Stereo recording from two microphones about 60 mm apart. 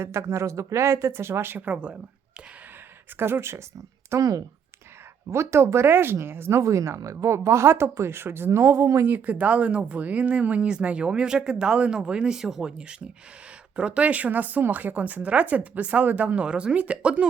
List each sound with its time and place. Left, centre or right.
0.0 s speech: right
1.5 s speech: right
3.2 s speech: right
4.2 s speech: right
5.3 s speech: right
6.6 s speech: right
9.0 s speech: right